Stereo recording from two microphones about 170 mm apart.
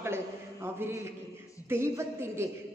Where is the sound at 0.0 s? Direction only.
15° right (ahead or behind).